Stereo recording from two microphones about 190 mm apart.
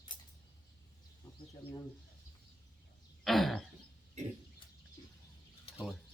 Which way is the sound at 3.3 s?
Centre (ahead or behind).